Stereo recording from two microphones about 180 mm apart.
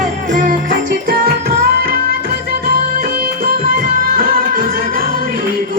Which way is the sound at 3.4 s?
55° right (ahead or behind).